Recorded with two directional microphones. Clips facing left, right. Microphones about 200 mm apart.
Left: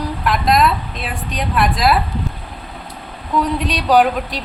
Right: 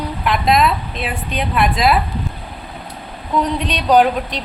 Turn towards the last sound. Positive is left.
turn(degrees=5)  # may be behind; listen again after turning